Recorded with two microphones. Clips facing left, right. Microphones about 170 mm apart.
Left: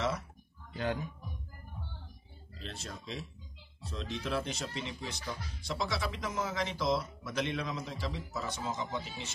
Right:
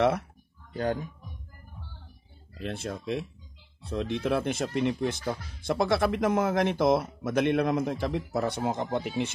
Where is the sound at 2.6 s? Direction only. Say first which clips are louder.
Right 11 dB; 55° right (ahead or behind).